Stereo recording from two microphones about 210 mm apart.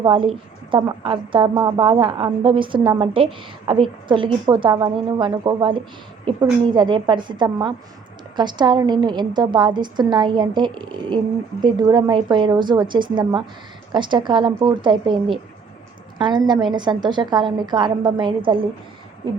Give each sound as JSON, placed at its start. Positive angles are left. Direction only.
{"t": 0.0, "sound": "a woman's voice", "side_deg": -25}